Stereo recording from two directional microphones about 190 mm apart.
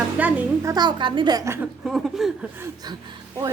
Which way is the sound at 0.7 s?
20° right (ahead or behind).